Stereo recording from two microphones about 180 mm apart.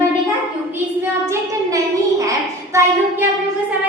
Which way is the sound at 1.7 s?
20° right (ahead or behind).